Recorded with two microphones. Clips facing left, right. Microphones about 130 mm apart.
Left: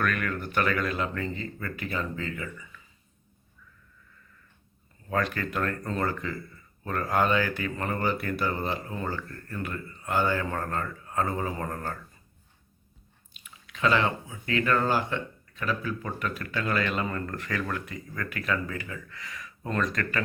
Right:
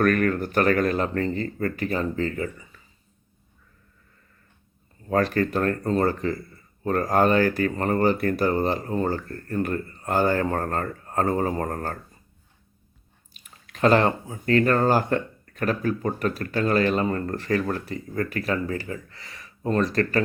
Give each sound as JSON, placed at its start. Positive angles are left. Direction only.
{"t": 0.0, "sound": "speech", "side_deg": -40}
{"t": 5.0, "sound": "speech", "side_deg": -35}
{"t": 13.3, "sound": "speech", "side_deg": -45}